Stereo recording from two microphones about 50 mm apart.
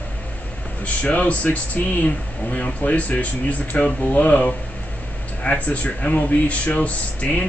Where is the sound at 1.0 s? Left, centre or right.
Left.